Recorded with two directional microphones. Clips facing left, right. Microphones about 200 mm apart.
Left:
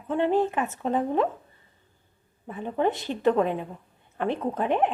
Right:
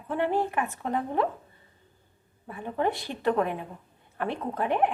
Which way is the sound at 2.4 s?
20° left (ahead or behind).